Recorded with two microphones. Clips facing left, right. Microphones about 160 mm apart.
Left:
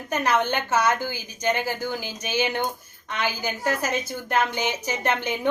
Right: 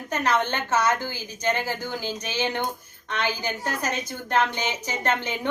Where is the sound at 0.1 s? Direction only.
10° left (ahead or behind).